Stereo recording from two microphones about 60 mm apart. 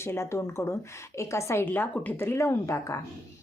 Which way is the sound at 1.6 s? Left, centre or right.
Left.